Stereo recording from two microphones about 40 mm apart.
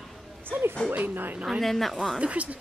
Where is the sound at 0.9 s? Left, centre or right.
Right.